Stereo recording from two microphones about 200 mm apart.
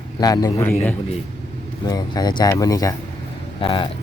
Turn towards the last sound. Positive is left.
turn(degrees=25)  # may be behind; listen again after turning